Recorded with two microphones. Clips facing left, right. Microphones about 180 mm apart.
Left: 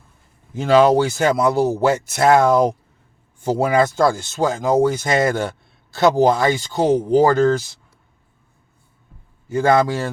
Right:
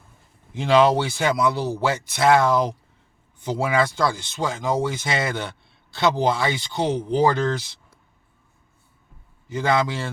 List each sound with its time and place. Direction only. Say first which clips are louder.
0.5 s speech: left 4 dB; 45° left (ahead or behind)
9.5 s speech: left 6 dB; 45° left (ahead or behind)